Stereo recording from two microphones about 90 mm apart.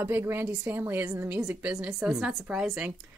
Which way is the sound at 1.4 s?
10° right (ahead or behind).